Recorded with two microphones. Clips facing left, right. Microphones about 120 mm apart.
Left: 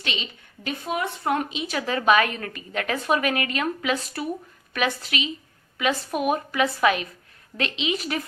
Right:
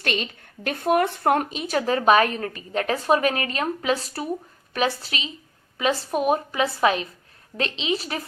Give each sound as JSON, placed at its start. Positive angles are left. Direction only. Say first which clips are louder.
{"t": 0.0, "sound": "speech", "louder": "right 5 dB", "side_deg": -50}